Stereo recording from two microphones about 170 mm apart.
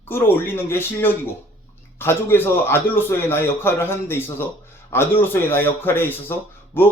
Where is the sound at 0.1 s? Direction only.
15° left (ahead or behind).